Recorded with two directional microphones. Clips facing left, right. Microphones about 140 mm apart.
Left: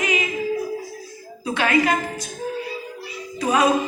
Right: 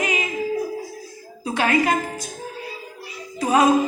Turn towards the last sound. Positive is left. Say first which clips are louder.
# right 2 dB
turn(degrees=-40)  # may be behind; listen again after turning